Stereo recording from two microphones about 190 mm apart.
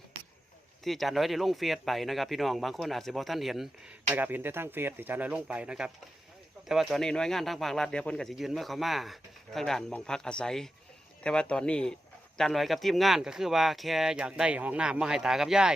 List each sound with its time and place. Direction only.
0.9 s speech: centre (ahead or behind)